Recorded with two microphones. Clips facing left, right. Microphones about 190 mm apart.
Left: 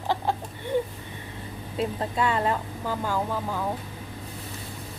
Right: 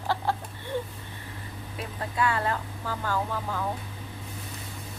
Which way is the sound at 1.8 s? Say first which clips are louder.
Left 3 dB; 25° left (ahead or behind).